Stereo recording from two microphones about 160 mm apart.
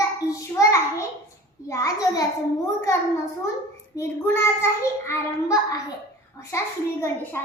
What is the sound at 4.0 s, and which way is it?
A child's voice, 15° left (ahead or behind).